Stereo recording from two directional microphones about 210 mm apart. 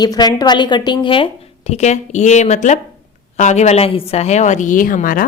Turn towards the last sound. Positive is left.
turn(degrees=40)  # may be behind; listen again after turning